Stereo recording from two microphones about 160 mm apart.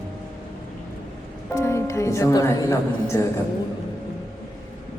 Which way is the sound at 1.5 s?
15° left (ahead or behind).